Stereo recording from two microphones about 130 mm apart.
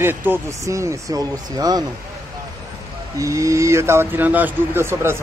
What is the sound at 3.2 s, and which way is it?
Speech, 25° right (ahead or behind).